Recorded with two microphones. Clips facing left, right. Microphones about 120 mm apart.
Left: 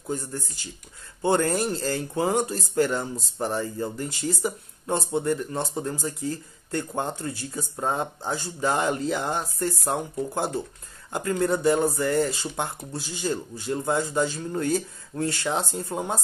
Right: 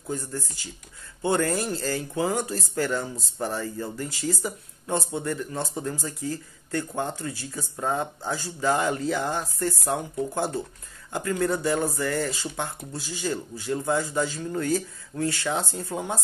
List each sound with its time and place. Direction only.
1.2 s speech: 30° left (ahead or behind)